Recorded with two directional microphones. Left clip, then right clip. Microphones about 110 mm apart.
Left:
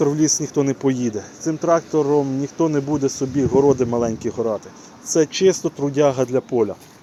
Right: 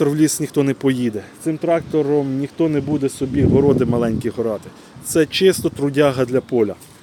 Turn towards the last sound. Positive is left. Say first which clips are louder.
# right 2 dB
turn(degrees=-90)